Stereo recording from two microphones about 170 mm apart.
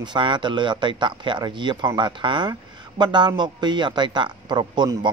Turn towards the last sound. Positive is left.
turn(degrees=-25)  # may be behind; listen again after turning